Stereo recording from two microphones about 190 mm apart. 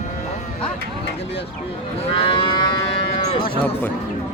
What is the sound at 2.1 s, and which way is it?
Speech, 30° left (ahead or behind).